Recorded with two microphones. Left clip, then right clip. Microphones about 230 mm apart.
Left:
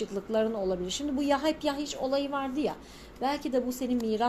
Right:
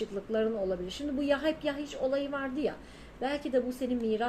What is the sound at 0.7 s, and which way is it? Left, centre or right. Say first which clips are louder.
A woman's voice: left 3 dB; left.